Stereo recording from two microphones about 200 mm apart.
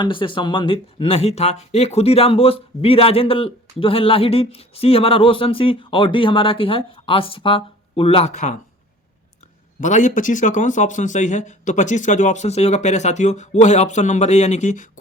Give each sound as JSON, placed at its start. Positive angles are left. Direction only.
{"t": 0.0, "sound": "speech", "side_deg": 25}
{"t": 9.8, "sound": "speech", "side_deg": 40}